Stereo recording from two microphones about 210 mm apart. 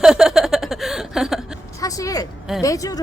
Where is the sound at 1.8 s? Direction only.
15° left (ahead or behind).